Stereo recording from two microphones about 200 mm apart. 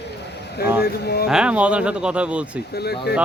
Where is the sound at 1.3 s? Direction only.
5° right (ahead or behind).